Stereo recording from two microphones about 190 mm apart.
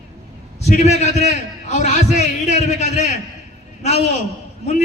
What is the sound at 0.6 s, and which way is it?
A man's voice, 35° left (ahead or behind).